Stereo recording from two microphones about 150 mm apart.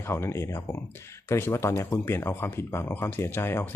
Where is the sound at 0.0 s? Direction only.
15° left (ahead or behind).